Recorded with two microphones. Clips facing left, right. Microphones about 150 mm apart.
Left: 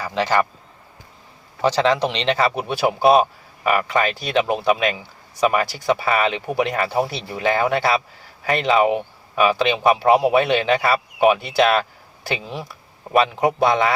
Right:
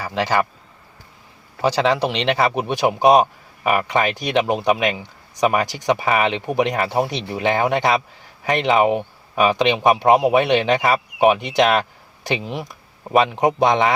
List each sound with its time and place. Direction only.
0.0 s a man's voice: 15° right (ahead or behind)
1.6 s a man's voice: 10° right (ahead or behind)